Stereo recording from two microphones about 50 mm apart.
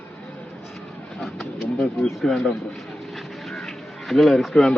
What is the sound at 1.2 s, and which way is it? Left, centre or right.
Pigeon, centre.